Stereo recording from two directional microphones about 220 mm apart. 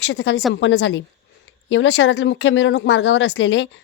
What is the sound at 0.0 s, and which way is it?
Speech, 55° left (ahead or behind).